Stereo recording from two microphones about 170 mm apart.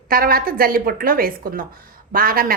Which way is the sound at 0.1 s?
60° right (ahead or behind).